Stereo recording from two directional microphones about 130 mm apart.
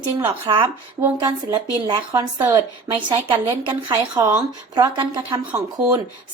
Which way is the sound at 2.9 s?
40° right (ahead or behind).